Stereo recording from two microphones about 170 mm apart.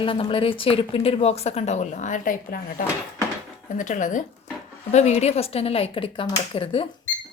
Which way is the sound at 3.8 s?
45° left (ahead or behind).